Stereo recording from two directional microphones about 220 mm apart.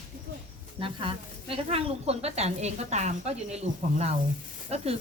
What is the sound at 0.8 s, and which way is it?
Speech, 25° right (ahead or behind).